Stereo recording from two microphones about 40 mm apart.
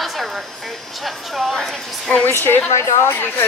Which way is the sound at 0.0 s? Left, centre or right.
Centre.